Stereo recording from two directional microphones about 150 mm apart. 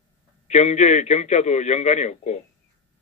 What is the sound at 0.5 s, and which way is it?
A man's voice, 50° left (ahead or behind).